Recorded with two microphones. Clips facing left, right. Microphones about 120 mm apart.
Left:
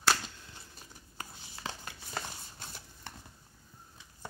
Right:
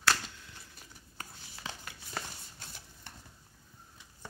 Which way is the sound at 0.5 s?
30° left (ahead or behind).